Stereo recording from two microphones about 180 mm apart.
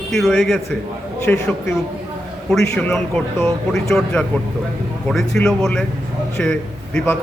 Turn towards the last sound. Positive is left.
turn(degrees=10)  # may be behind; listen again after turning